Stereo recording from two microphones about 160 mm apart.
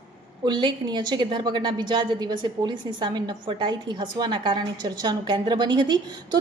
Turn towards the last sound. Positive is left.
turn(degrees=-25)  # may be behind; listen again after turning